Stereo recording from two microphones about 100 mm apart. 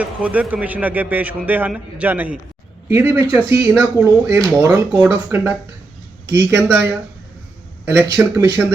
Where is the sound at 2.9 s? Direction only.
30° right (ahead or behind).